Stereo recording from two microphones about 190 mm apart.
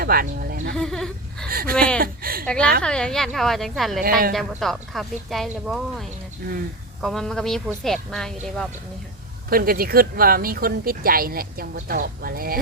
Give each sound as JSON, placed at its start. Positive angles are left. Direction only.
{"t": 0.0, "sound": "speech", "side_deg": -50}
{"t": 0.8, "sound": "speech", "side_deg": 0}
{"t": 1.5, "sound": "a sound", "side_deg": -50}
{"t": 2.0, "sound": "speech", "side_deg": -50}
{"t": 2.5, "sound": "speech", "side_deg": 5}
{"t": 9.5, "sound": "speech", "side_deg": -50}